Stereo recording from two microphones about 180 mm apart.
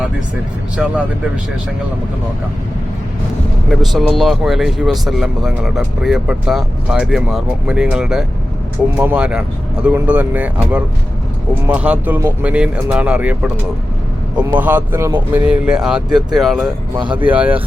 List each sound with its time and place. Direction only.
0.8 s speech: 5° right (ahead or behind)
3.7 s speech: centre (ahead or behind)
17.0 s speech: 25° right (ahead or behind)
17.2 s speech: 10° right (ahead or behind)